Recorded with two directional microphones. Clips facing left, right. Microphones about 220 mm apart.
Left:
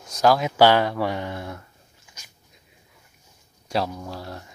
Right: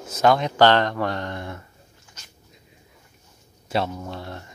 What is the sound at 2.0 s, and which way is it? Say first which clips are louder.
Dog: right 2 dB; 10° left (ahead or behind).